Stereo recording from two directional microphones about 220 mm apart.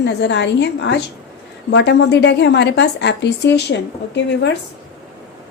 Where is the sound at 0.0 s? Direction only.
50° left (ahead or behind).